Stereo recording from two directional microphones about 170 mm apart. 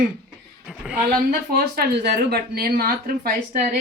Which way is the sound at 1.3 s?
60° right (ahead or behind).